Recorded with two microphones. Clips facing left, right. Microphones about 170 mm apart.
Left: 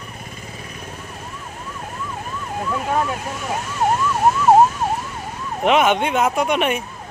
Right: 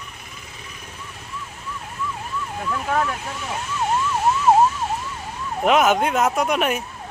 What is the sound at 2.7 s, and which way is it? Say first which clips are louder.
Vehicle: left 1 dB; 40° left (ahead or behind).